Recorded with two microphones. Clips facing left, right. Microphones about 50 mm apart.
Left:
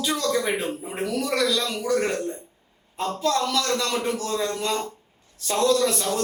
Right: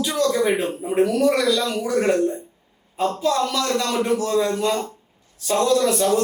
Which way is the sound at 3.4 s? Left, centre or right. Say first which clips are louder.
Right 3 dB; centre.